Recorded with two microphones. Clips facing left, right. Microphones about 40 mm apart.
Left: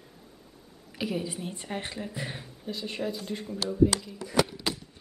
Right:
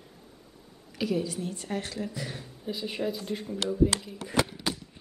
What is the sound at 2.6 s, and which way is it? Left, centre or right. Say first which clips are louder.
Speech: right 2 dB; centre.